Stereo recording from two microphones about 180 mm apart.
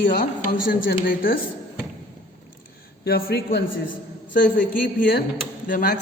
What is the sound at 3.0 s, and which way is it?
Speech, 60° left (ahead or behind).